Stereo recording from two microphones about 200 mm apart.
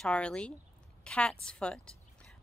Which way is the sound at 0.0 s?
5° left (ahead or behind).